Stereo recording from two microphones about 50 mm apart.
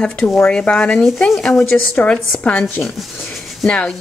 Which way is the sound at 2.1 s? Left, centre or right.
Left.